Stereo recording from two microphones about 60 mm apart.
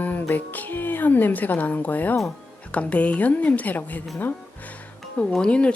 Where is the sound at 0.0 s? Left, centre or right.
Left.